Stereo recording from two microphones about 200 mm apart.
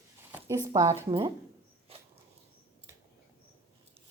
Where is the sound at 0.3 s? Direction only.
10° right (ahead or behind).